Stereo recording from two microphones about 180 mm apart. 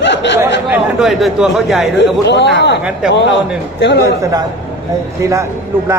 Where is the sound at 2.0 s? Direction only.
80° left.